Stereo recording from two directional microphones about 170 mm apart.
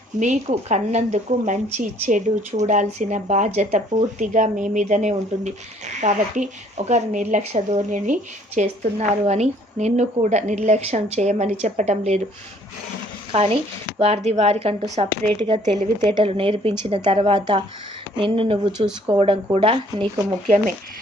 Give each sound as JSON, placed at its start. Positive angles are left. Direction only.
{"t": 0.2, "sound": "speech", "side_deg": -45}
{"t": 13.3, "sound": "speech", "side_deg": -35}